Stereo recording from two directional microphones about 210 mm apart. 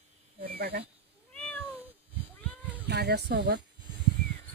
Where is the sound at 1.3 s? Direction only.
5° left (ahead or behind).